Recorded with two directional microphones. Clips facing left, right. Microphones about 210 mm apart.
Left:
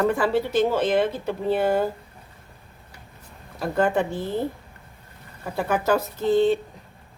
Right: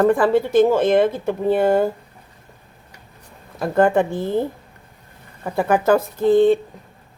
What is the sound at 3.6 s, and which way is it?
Speech, 55° right (ahead or behind).